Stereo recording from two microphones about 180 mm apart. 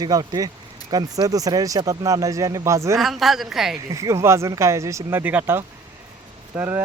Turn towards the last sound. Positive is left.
turn(degrees=-10)  # may be behind; listen again after turning